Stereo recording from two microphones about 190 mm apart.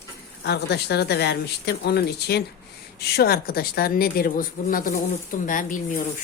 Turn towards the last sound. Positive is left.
turn(degrees=45)  # may be behind; listen again after turning